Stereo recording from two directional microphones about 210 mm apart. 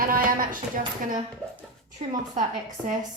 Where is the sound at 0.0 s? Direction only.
40° right (ahead or behind).